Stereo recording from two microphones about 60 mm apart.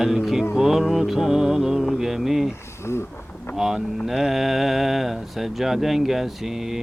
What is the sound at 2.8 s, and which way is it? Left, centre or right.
Speech, left.